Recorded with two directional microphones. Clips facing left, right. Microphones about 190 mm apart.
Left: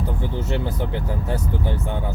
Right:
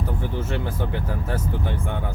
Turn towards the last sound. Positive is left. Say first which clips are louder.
# left 2 dB
turn(degrees=20)  # may be behind; listen again after turning